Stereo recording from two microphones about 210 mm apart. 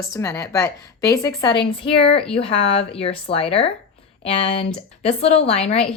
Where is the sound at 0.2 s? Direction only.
15° left (ahead or behind).